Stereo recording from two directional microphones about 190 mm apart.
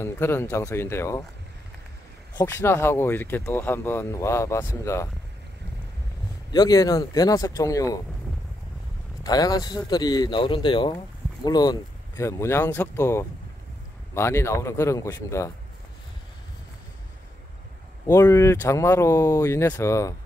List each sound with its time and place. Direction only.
0.0 s speech: 15° left (ahead or behind)
2.3 s speech: 15° left (ahead or behind)
6.5 s speech: 20° left (ahead or behind)
9.2 s speech: 20° left (ahead or behind)
18.0 s speech: 15° left (ahead or behind)